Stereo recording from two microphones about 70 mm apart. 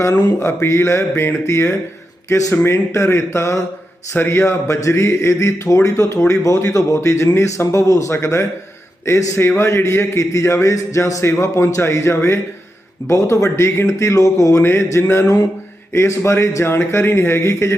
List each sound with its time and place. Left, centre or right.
0.3 s a man's voice: left
14.6 s a man's voice: left